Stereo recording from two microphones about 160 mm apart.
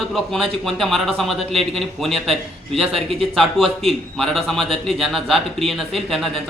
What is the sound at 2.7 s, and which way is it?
Speech, 35° right (ahead or behind).